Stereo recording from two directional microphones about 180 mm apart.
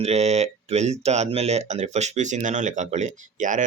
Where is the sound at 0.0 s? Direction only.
35° right (ahead or behind).